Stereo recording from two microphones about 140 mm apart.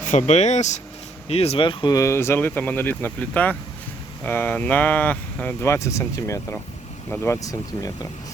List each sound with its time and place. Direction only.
0.0 s speech: 55° left (ahead or behind); by 7.9 s 25° left (ahead or behind)